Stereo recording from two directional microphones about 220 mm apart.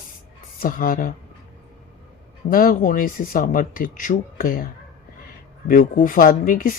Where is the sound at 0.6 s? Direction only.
40° left (ahead or behind).